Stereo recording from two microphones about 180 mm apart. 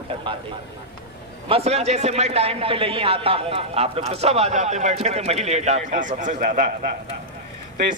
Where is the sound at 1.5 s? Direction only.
35° right (ahead or behind).